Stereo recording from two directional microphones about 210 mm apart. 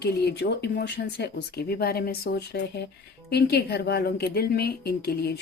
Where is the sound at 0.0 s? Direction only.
50° left (ahead or behind).